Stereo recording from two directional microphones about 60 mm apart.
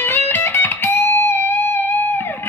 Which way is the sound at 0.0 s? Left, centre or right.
Left.